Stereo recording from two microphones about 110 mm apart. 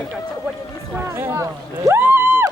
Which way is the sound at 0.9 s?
20° right (ahead or behind).